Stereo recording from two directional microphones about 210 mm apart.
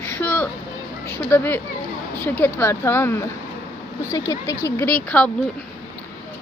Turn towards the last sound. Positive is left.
turn(degrees=5)  # may be behind; listen again after turning